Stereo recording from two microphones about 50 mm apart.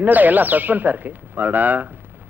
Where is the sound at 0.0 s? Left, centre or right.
Right.